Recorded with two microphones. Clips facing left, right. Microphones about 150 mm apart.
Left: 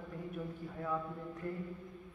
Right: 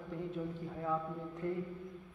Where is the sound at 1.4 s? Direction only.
20° right (ahead or behind).